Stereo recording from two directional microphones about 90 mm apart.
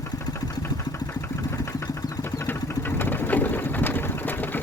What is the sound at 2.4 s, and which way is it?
Sewing machine, 20° left (ahead or behind).